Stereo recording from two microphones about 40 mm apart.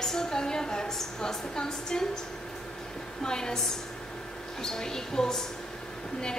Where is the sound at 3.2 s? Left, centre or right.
Centre.